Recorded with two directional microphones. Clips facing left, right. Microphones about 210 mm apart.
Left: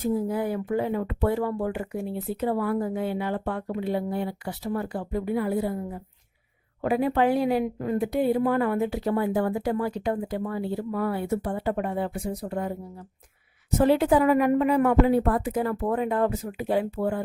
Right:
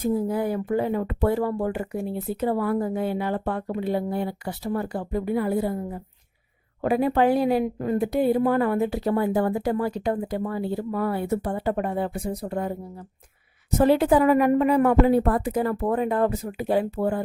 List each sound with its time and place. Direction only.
0.0 s speech: 40° right (ahead or behind)
13.7 s speech: 40° right (ahead or behind)